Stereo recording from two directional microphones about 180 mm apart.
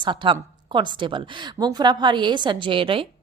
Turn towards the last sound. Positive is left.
turn(degrees=-30)  # may be behind; listen again after turning